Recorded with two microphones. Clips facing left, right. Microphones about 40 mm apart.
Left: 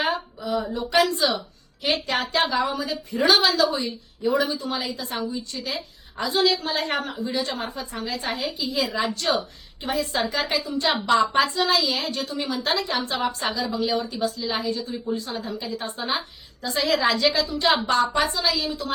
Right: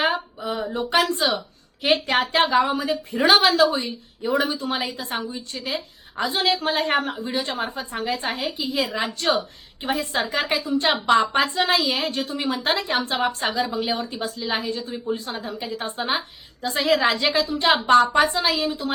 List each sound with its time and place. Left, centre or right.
0.0 s a woman's voice: right
8.7 s a woman's voice: centre
9.0 s a woman's voice: right
13.4 s a woman's voice: right
14.3 s a woman's voice: right